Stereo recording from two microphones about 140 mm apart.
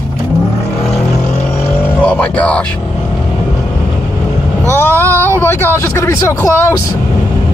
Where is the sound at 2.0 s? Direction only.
10° left (ahead or behind).